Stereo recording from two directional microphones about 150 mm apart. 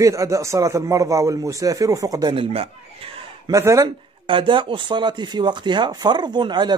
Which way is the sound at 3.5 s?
20° right (ahead or behind).